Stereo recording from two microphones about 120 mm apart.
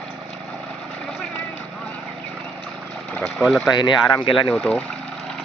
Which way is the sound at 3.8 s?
45° left (ahead or behind).